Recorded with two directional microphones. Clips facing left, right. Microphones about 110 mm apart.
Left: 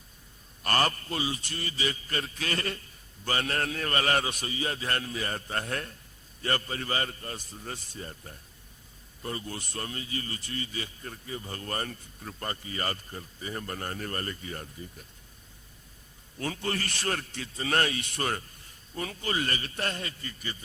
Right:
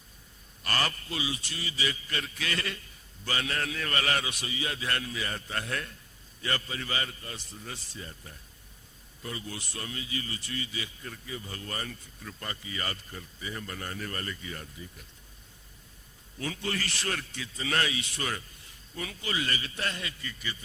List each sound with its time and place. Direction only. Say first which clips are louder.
0.6 s a man's voice: left 5 dB; 45° left (ahead or behind)
16.4 s a man's voice: left 2 dB; 40° left (ahead or behind)